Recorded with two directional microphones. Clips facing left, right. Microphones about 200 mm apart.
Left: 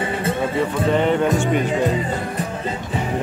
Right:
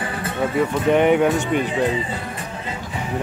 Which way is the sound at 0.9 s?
10° right (ahead or behind).